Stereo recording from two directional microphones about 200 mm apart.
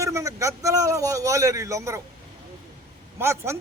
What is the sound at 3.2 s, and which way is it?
Speech, 15° right (ahead or behind).